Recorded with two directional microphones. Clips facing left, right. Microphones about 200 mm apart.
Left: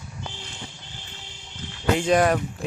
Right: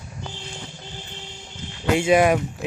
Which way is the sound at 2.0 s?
10° right (ahead or behind).